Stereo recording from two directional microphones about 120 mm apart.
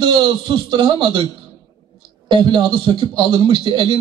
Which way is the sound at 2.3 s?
40° right (ahead or behind).